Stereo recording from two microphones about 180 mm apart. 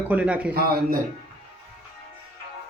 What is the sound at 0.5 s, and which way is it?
Speech, 60° right (ahead or behind).